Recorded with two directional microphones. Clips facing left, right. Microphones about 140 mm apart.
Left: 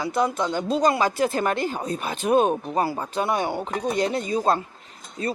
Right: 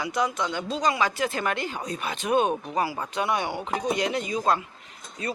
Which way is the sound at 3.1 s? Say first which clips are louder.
Left 3 dB; 35° left (ahead or behind).